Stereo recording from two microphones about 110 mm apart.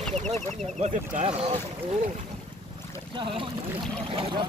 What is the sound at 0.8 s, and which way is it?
Speech, 75° right (ahead or behind).